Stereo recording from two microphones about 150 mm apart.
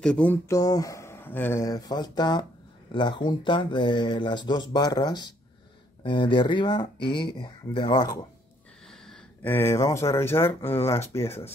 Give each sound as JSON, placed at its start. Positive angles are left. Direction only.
{"t": 0.0, "sound": "a sound", "side_deg": 5}
{"t": 0.5, "sound": "speech", "side_deg": 25}
{"t": 8.8, "sound": "speech", "side_deg": 5}